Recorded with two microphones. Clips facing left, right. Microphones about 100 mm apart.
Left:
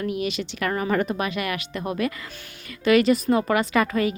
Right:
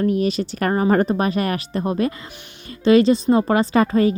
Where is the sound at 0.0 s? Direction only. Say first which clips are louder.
Right 7 dB; 40° right (ahead or behind).